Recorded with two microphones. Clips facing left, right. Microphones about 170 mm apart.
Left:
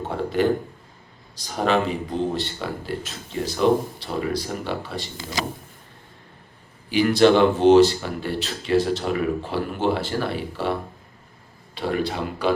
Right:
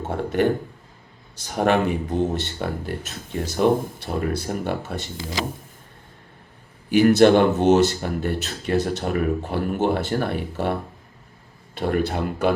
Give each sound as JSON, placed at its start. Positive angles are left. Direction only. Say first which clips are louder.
{"t": 0.1, "sound": "a man's voice", "louder": "right 1 dB", "side_deg": -55}
{"t": 1.5, "sound": "speech", "louder": "right 2 dB", "side_deg": -55}
{"t": 6.9, "sound": "speech", "louder": "right 2 dB", "side_deg": -50}